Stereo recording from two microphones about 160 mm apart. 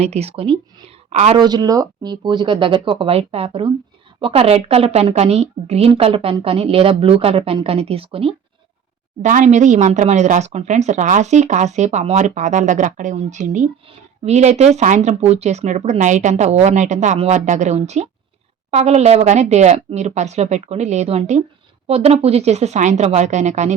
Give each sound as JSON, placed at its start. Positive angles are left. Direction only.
{"t": 0.0, "sound": "a woman's voice", "side_deg": -40}
{"t": 1.4, "sound": "a woman's voice", "side_deg": -25}
{"t": 9.2, "sound": "speech", "side_deg": -50}